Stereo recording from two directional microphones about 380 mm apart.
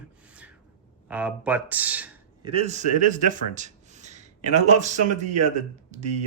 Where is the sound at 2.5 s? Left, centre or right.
Centre.